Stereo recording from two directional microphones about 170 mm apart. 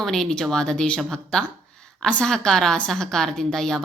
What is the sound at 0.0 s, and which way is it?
A woman's voice, 5° left (ahead or behind).